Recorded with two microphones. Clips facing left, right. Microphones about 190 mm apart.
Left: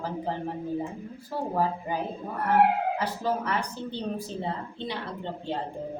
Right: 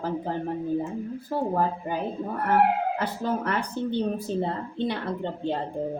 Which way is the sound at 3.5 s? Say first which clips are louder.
Right 4 dB; 55° right (ahead or behind).